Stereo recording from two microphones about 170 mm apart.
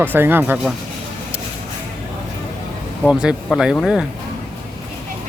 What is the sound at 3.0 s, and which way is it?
Speech, 5° right (ahead or behind).